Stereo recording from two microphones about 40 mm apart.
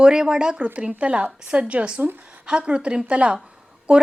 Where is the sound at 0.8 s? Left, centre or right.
Right.